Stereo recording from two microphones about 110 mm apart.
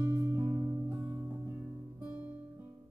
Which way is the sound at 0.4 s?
30° right (ahead or behind).